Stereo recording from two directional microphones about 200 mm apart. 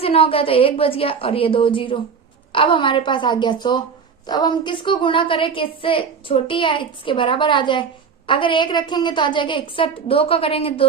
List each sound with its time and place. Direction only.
0.0 s a woman's voice: 30° left (ahead or behind)